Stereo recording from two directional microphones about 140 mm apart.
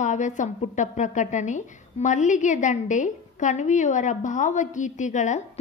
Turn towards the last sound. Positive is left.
turn(degrees=55)  # may be behind; listen again after turning